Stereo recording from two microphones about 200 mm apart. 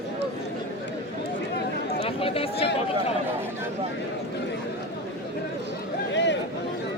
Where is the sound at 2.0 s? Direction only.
30° left (ahead or behind).